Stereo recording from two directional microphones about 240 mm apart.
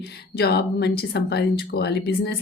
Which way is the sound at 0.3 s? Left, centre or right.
Left.